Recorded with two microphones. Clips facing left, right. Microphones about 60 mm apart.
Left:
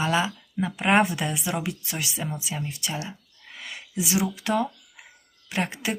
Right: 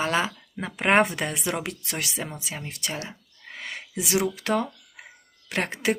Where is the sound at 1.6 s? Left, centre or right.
Right.